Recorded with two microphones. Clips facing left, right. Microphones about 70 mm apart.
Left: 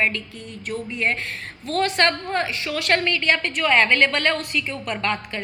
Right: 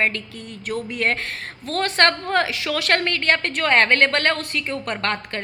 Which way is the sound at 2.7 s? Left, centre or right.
Right.